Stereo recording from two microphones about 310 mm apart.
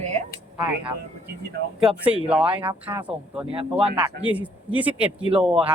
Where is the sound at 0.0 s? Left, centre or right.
Right.